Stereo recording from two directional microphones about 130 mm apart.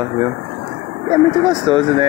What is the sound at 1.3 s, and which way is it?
Speech, 35° right (ahead or behind).